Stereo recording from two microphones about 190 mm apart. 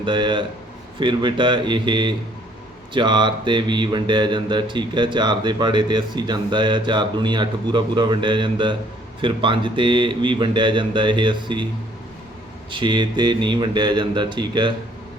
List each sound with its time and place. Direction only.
0.0 s speech: 25° right (ahead or behind)
12.7 s speech: 25° right (ahead or behind)